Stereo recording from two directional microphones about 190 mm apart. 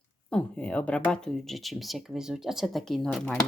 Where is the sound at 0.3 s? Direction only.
5° left (ahead or behind).